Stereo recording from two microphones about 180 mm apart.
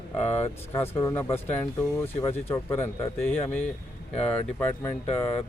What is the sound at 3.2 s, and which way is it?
Speech, 5° left (ahead or behind).